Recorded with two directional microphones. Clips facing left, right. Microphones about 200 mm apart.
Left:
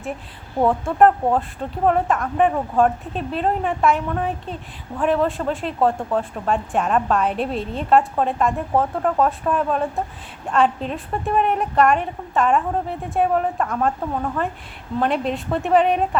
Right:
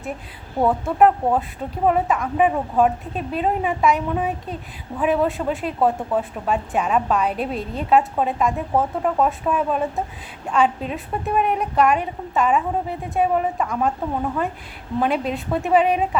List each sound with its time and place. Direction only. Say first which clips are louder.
0.6 s a woman's voice: left 1 dB; 5° right (ahead or behind)